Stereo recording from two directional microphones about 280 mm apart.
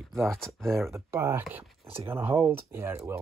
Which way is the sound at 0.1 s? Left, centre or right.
Centre.